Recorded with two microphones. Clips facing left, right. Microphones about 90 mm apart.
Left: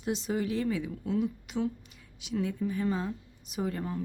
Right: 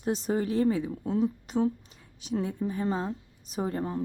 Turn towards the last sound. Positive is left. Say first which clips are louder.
# right 3 dB
turn(degrees=-30)  # may be behind; listen again after turning